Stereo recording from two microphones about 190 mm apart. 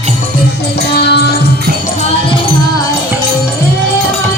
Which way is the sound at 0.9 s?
60° left (ahead or behind).